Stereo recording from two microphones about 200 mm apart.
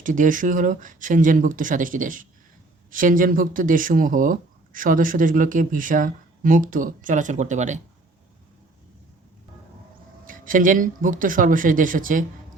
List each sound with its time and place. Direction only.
0.0 s speech: 40° right (ahead or behind)
10.2 s speech: 40° right (ahead or behind)